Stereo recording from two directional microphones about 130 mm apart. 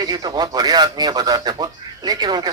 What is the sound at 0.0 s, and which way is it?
Speech, 30° right (ahead or behind).